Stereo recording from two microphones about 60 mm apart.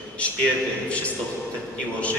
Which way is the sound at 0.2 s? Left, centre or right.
Left.